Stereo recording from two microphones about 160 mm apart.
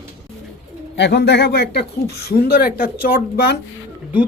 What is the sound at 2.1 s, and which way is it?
Speech, 80° left.